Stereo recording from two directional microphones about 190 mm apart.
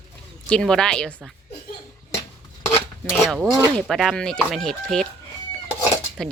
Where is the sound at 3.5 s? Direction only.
20° right (ahead or behind).